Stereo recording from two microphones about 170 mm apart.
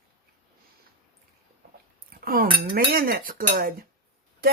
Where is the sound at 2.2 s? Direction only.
60° right (ahead or behind).